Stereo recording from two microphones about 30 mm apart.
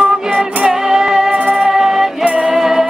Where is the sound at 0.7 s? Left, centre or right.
Centre.